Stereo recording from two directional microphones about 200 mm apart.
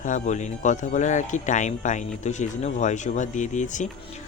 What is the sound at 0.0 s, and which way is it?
Speech, 35° left (ahead or behind).